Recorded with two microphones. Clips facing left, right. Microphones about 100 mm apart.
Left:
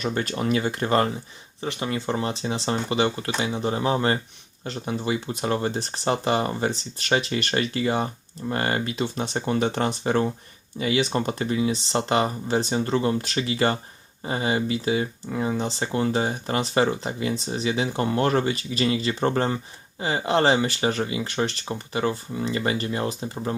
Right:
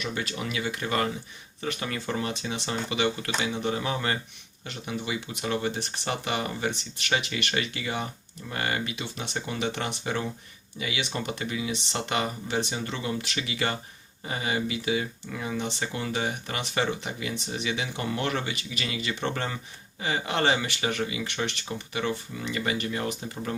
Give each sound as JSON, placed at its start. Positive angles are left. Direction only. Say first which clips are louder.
{"t": 0.0, "sound": "speech", "louder": "left 6 dB", "side_deg": 45}
{"t": 1.6, "sound": "speech", "louder": "left 4 dB", "side_deg": 25}